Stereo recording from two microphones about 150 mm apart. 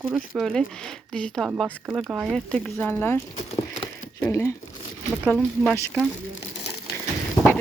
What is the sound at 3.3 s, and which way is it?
Speech, 45° left (ahead or behind).